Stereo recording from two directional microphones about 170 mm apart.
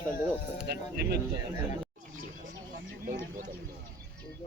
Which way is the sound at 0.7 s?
70° right (ahead or behind).